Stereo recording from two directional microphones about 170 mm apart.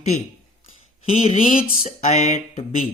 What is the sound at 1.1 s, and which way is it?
Speech, 45° left (ahead or behind).